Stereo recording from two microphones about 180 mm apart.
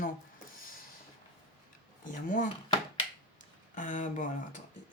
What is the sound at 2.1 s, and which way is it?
Speech, 45° left (ahead or behind).